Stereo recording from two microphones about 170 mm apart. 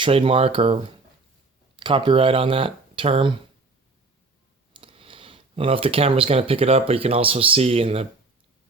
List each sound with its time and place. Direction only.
0.0 s speech: 35° right (ahead or behind)
4.7 s speech: 30° right (ahead or behind)